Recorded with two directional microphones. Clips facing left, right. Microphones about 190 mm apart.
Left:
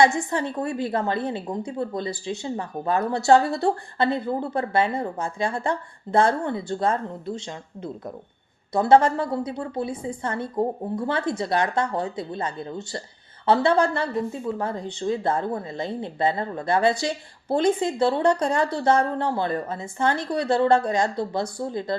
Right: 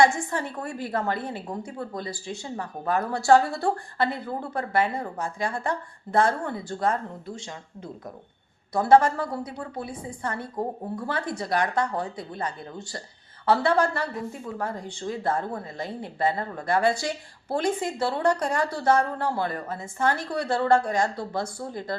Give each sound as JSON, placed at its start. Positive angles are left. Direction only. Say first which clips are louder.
{"t": 0.0, "sound": "a woman's voice", "louder": "left 2 dB", "side_deg": 20}